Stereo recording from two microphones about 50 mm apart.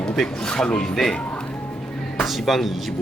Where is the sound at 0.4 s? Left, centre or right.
Centre.